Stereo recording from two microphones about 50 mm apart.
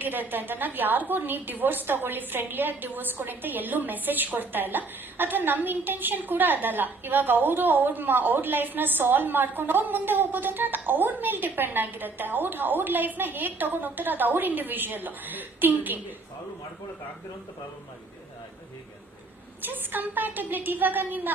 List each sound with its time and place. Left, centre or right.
0.0 s a woman's voice: right
19.6 s a woman's voice: right